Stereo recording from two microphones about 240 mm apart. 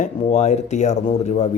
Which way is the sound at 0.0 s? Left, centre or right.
Left.